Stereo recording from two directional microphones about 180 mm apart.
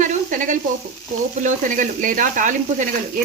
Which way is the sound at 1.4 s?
45° right (ahead or behind).